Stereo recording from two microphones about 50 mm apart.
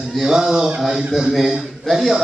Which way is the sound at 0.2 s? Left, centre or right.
Centre.